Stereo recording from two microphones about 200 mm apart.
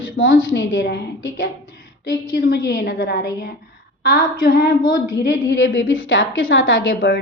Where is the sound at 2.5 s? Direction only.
60° left (ahead or behind).